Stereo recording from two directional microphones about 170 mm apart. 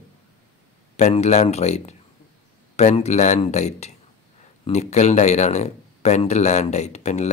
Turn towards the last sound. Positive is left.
turn(degrees=40)  # may be behind; listen again after turning